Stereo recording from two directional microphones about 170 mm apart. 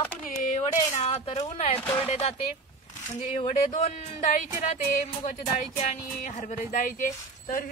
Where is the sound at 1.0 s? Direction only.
40° left (ahead or behind).